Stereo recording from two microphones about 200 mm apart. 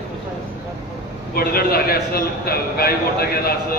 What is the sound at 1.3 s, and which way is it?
A man's voice, 50° left (ahead or behind).